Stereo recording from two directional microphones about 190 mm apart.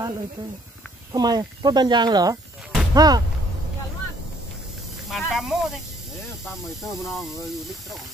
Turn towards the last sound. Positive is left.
turn(degrees=0)  # may be behind; listen again after turning